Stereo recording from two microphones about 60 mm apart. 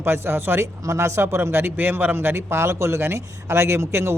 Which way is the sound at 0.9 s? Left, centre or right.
Right.